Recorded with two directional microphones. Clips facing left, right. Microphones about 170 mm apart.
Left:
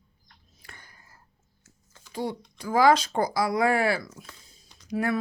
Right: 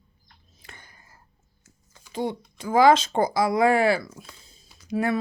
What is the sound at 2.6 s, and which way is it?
Speech, 20° right (ahead or behind).